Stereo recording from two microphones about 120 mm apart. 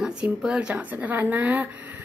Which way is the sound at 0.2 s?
5° right (ahead or behind).